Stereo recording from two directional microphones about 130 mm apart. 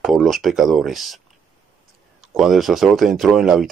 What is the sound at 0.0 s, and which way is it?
Speech, centre (ahead or behind).